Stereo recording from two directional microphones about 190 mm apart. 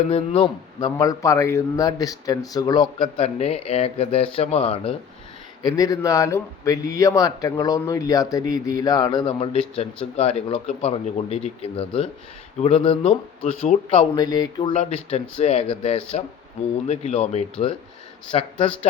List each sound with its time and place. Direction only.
0.1 s speech: 25° left (ahead or behind)
5.6 s speech: 20° left (ahead or behind)
14.8 s speech: 35° left (ahead or behind)